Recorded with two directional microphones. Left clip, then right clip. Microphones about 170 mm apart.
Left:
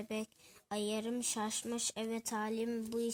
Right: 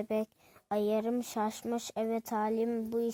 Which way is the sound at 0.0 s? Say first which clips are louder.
Right 8 dB; 45° right (ahead or behind).